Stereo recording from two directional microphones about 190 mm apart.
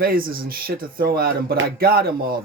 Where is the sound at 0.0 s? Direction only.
50° right (ahead or behind).